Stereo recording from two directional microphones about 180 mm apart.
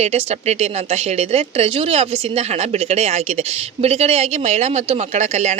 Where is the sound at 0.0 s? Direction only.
35° right (ahead or behind).